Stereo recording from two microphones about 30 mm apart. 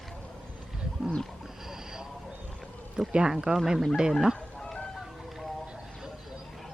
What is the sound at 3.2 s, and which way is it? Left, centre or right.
Speech, right.